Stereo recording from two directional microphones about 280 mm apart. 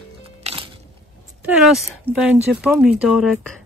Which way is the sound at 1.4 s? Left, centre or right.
Centre.